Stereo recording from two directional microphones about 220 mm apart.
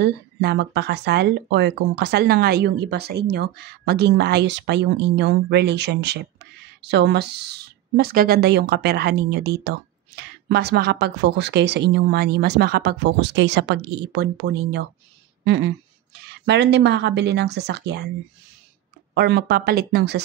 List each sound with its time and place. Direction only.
0.0 s a woman's voice: 50° right (ahead or behind)
15.4 s a sound: 55° right (ahead or behind)
16.2 s a woman's voice: 50° right (ahead or behind)
19.1 s a woman's voice: 50° right (ahead or behind)